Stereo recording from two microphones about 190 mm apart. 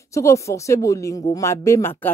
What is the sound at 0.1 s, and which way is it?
Speech, 15° left (ahead or behind).